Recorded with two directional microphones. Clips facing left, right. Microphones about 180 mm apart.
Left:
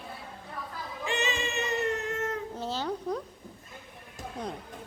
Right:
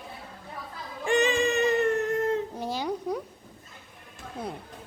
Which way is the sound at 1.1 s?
50° right (ahead or behind).